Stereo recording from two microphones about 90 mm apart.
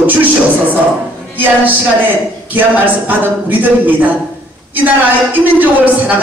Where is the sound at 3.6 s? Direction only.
20° right (ahead or behind).